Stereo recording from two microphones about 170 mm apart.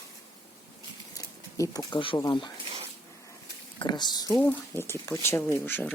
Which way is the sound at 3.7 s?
25° left (ahead or behind).